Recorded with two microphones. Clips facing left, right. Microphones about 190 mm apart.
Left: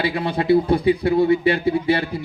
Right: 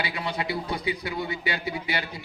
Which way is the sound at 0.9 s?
55° left (ahead or behind).